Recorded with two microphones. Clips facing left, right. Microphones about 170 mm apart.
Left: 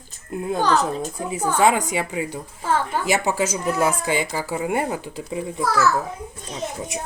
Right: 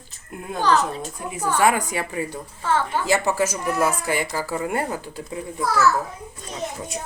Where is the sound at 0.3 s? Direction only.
25° left (ahead or behind).